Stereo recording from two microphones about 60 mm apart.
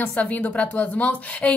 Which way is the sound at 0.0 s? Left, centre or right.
Left.